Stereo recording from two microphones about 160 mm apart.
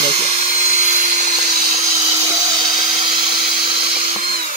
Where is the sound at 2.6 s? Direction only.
30° right (ahead or behind).